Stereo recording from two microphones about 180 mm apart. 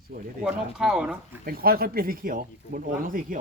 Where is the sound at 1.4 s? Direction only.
55° right (ahead or behind).